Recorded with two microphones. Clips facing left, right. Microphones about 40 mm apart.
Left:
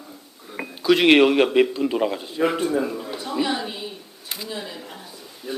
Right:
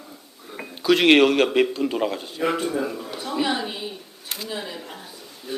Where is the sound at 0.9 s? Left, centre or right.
Centre.